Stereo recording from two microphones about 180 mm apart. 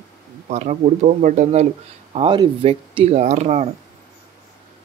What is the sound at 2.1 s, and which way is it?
Speech, 25° right (ahead or behind).